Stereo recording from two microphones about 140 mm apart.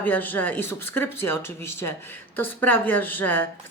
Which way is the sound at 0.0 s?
10° left (ahead or behind).